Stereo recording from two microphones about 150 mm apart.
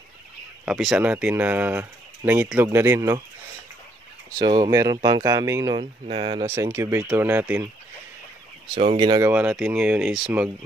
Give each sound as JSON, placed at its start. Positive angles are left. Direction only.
{"t": 0.7, "sound": "speech", "side_deg": -5}
{"t": 4.4, "sound": "speech", "side_deg": -30}
{"t": 5.8, "sound": "speech", "side_deg": -40}
{"t": 6.4, "sound": "speech", "side_deg": -15}
{"t": 8.7, "sound": "speech", "side_deg": -35}
{"t": 9.2, "sound": "speech", "side_deg": -10}